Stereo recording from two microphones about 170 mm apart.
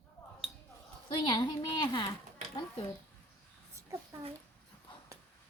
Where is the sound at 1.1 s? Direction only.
25° left (ahead or behind).